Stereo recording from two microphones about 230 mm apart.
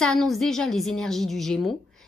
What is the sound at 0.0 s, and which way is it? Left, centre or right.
A woman's voice, centre.